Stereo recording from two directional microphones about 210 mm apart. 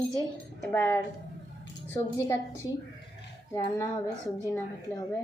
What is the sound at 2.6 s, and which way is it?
Speech, 15° left (ahead or behind).